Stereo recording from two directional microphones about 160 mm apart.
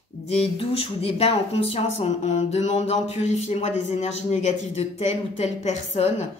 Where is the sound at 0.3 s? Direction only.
40° left (ahead or behind).